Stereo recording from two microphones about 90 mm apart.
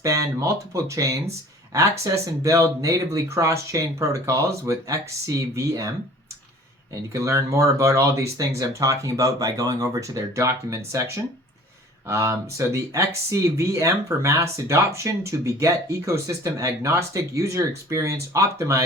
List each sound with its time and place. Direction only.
0.0 s speech: 35° right (ahead or behind)
7.1 s speech: 35° right (ahead or behind)